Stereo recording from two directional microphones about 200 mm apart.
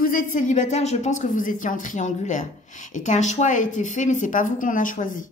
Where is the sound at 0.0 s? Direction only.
45° left (ahead or behind).